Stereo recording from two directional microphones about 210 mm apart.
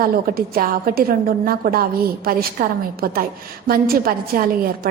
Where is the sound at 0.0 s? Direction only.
45° right (ahead or behind).